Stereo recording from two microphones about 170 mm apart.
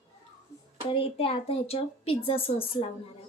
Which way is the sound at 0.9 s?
30° left (ahead or behind).